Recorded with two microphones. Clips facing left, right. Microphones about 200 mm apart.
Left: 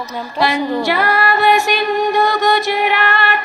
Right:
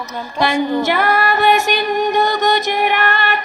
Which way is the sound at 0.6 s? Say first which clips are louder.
Right 1 dB; 20° right (ahead or behind).